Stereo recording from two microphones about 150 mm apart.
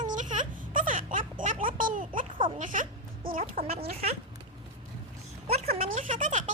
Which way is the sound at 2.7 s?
65° right (ahead or behind).